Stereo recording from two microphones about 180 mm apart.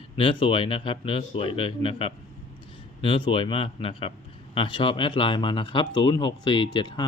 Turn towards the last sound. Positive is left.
turn(degrees=25)  # may be behind; listen again after turning